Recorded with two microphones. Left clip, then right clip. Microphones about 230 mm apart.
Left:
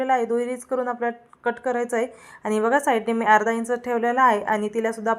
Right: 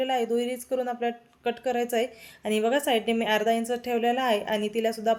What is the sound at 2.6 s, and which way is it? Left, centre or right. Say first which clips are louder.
Speech: left 4 dB; left.